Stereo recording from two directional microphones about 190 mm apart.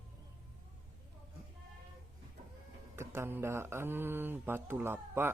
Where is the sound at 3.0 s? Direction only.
15° right (ahead or behind).